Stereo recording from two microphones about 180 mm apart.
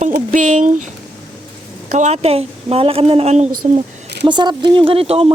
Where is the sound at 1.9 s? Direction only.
40° right (ahead or behind).